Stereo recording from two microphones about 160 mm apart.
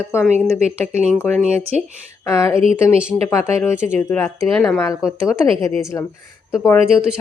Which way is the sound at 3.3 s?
15° left (ahead or behind).